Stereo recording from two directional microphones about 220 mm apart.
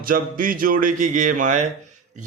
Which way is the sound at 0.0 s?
40° right (ahead or behind).